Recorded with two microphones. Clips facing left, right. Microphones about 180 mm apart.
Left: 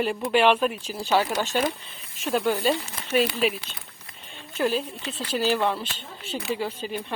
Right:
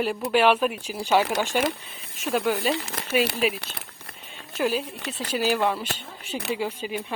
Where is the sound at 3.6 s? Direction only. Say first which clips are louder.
Right 2 dB; 70° right (ahead or behind).